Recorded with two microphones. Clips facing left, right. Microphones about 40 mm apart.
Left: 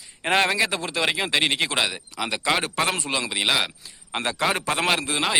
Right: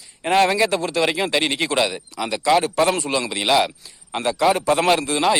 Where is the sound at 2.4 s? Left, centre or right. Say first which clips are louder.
Right 7 dB; left.